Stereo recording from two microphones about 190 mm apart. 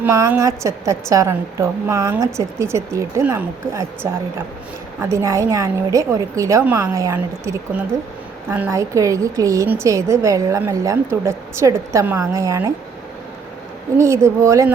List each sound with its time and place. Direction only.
0.0 s a woman's voice: 10° right (ahead or behind)
14.0 s a woman's voice: 15° right (ahead or behind)